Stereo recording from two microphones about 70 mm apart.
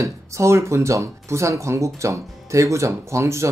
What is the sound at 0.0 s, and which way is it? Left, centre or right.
Speech, right.